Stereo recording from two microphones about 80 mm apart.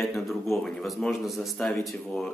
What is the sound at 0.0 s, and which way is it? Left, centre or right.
Speech, centre.